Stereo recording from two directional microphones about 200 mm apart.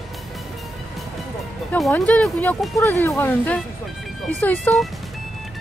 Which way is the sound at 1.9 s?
5° left (ahead or behind).